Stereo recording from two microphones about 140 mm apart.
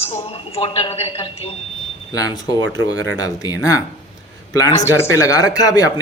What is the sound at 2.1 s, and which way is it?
A man's voice, 25° left (ahead or behind).